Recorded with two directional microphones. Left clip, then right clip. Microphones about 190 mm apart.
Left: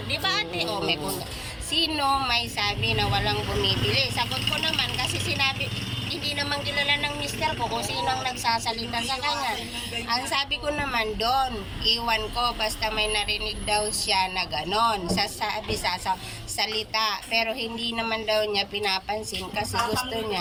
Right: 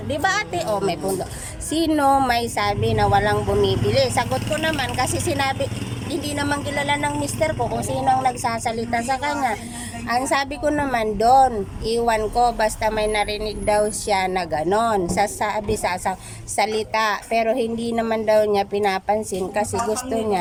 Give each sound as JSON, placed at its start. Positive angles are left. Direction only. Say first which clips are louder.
{"t": 0.1, "sound": "speech", "louder": "right 5 dB", "side_deg": -55}